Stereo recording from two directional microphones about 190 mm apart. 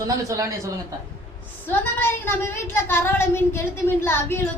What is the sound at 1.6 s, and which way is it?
Speech, 10° left (ahead or behind).